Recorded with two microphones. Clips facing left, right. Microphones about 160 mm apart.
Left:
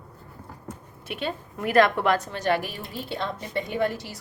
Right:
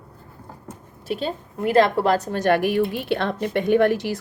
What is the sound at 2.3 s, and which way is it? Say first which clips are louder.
A woman's voice: right 6 dB; 50° right (ahead or behind).